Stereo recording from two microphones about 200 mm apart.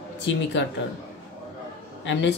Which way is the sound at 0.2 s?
65° left (ahead or behind).